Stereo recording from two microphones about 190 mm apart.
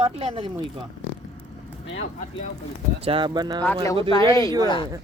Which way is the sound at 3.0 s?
25° right (ahead or behind).